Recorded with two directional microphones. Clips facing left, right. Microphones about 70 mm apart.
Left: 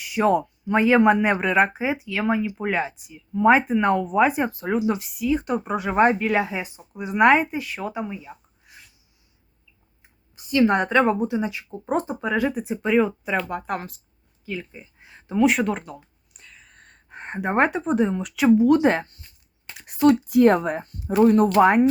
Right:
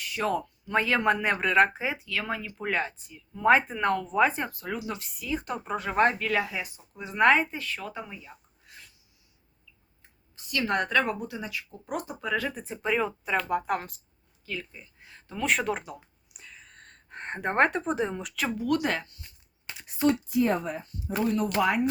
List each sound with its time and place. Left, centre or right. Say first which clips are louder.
0.0 s speech: left 8 dB; centre
4.9 s speech: left 9 dB; centre
10.0 s speech: left 2 dB; left; by 14.0 s centre
14.4 s a sound: left 5 dB; centre
15.4 s gasp: left 3 dB; centre
18.3 s speech: left 12 dB; centre
19.8 s speech: left 8 dB; left